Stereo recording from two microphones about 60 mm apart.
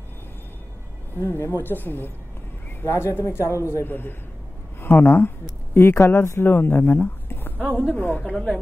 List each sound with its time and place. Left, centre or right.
1.2 s a woman's voice: left
2.8 s speech: left
3.8 s a woman's voice: left